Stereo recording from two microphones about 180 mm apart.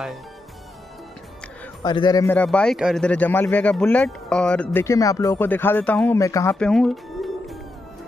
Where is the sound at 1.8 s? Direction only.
25° left (ahead or behind).